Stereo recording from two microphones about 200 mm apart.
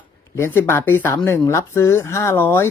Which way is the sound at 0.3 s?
10° left (ahead or behind).